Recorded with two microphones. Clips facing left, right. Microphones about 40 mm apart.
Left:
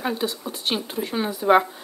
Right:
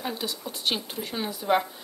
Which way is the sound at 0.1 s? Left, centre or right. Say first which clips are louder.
Left 6 dB; centre.